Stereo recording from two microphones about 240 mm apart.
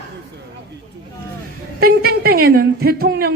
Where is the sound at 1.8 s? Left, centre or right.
Right.